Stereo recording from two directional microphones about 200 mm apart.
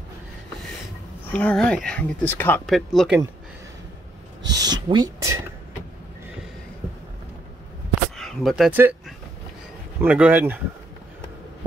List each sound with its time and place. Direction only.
1.3 s speech: 5° left (ahead or behind)
4.6 s speech: 20° right (ahead or behind)
8.2 s speech: centre (ahead or behind)
9.9 s speech: 5° right (ahead or behind)